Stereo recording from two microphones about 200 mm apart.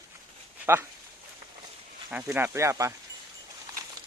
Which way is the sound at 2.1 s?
10° right (ahead or behind).